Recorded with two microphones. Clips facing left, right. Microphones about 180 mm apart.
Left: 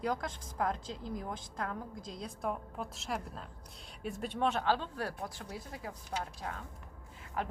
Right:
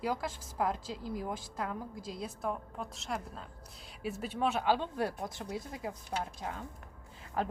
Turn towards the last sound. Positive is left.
turn(degrees=-35)  # may be behind; listen again after turning